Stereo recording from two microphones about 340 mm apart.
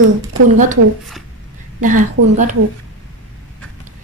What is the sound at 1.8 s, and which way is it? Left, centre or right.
Speech, right.